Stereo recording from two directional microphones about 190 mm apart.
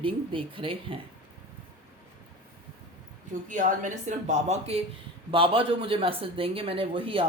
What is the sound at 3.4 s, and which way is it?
Speech, 40° right (ahead or behind).